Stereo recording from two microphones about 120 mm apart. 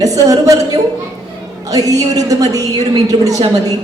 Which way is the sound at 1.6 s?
30° right (ahead or behind).